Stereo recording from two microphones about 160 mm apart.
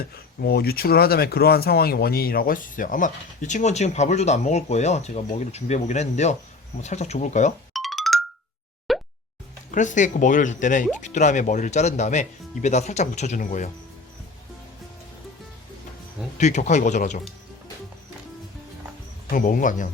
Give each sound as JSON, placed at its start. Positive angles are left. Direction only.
{"t": 0.4, "sound": "speech", "side_deg": 75}
{"t": 7.7, "sound": "music", "side_deg": 0}
{"t": 8.9, "sound": "plop", "side_deg": 0}
{"t": 9.7, "sound": "speech", "side_deg": 50}
{"t": 16.4, "sound": "speech", "side_deg": 50}
{"t": 19.3, "sound": "speech", "side_deg": 60}